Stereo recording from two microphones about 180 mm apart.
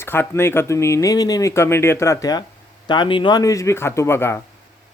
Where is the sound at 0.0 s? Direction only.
15° left (ahead or behind).